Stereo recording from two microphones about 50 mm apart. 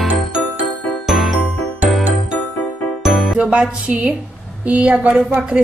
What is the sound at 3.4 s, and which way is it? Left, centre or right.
Music, right.